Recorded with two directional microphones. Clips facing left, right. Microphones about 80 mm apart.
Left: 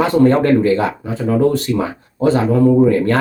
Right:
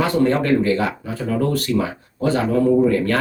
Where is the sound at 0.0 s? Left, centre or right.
Left.